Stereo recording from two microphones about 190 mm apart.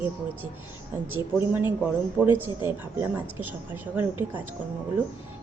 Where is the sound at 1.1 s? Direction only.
10° right (ahead or behind).